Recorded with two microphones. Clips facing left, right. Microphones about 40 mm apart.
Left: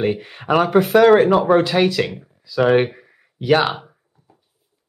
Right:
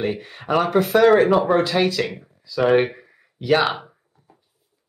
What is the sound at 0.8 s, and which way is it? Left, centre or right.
Speech, centre.